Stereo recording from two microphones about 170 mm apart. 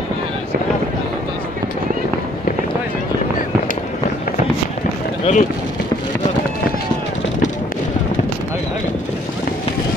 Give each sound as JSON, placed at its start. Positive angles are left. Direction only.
{"t": 5.3, "sound": "speech", "side_deg": 35}